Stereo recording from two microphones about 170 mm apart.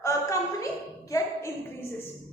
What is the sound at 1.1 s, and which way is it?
Speech, 20° left (ahead or behind).